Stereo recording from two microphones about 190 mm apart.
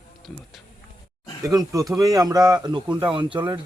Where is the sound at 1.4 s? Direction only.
15° right (ahead or behind).